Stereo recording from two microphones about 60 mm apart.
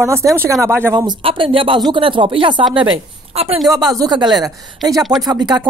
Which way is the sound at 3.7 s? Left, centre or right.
Right.